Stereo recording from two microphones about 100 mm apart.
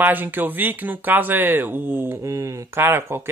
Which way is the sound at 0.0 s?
20° right (ahead or behind).